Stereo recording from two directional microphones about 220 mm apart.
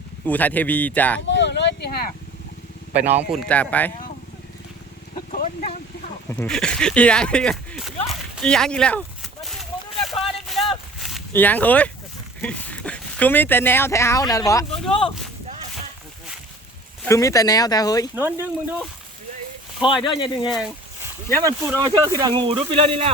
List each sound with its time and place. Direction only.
0.3 s speech: 5° left (ahead or behind)
1.3 s vehicle: 55° left (ahead or behind)
2.9 s a man's voice: 5° right (ahead or behind)
3.2 s speech: 5° left (ahead or behind)
6.3 s speech: 5° left (ahead or behind)
8.4 s a sound: centre (ahead or behind)
11.0 s speech: 5° left (ahead or behind)
15.0 s a sound: centre (ahead or behind)
17.1 s speech: 15° left (ahead or behind)
18.1 s speech: 10° right (ahead or behind)
19.8 s speech: 20° left (ahead or behind)
21.4 s speech: 15° right (ahead or behind)